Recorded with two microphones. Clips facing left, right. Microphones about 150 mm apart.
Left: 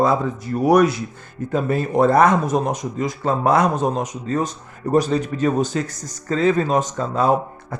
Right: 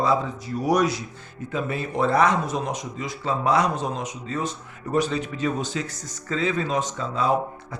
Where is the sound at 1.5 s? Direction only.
45° left (ahead or behind).